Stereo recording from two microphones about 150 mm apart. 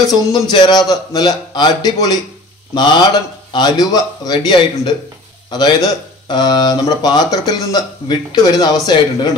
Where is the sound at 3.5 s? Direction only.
25° left (ahead or behind).